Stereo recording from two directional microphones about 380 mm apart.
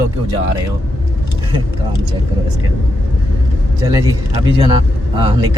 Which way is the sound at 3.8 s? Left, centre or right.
Centre.